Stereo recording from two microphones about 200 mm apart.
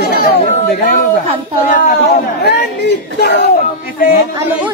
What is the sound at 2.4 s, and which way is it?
Speech, 55° left (ahead or behind).